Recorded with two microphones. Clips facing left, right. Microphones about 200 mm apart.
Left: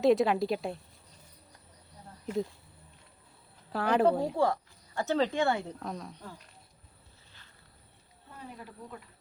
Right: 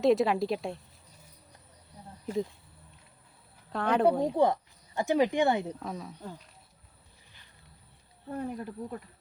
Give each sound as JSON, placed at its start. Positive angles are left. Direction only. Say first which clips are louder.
{"t": 0.0, "sound": "a woman's voice", "louder": "even", "side_deg": 0}
{"t": 3.7, "sound": "a woman's voice", "louder": "even", "side_deg": 5}
{"t": 4.4, "sound": "speech", "louder": "right 3 dB", "side_deg": -20}
{"t": 5.8, "sound": "a woman's voice", "louder": "right 1 dB", "side_deg": 0}
{"t": 8.3, "sound": "speech", "louder": "right 11 dB", "side_deg": -50}